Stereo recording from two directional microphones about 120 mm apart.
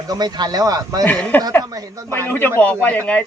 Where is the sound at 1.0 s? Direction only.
10° left (ahead or behind).